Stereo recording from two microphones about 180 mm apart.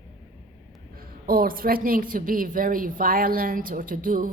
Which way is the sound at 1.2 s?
55° right (ahead or behind).